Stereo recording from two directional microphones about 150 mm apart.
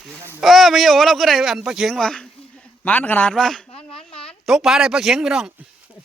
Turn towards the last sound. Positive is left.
turn(degrees=0)  # may be behind; listen again after turning